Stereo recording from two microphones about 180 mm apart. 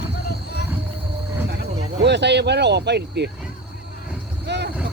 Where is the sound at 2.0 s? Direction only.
75° right (ahead or behind).